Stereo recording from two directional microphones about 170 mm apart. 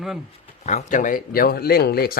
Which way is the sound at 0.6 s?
45° left (ahead or behind).